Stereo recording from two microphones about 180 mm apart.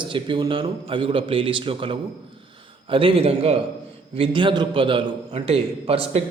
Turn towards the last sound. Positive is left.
turn(degrees=-30)  # may be behind; listen again after turning